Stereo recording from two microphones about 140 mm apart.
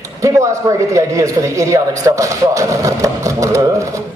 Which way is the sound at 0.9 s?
25° right (ahead or behind).